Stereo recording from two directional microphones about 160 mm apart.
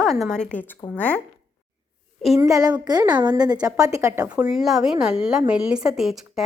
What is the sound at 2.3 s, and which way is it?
A woman's voice, 20° right (ahead or behind).